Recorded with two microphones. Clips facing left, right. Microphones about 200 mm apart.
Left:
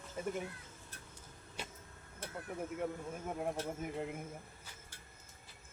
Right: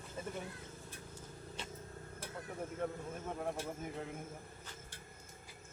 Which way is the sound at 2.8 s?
10° left (ahead or behind).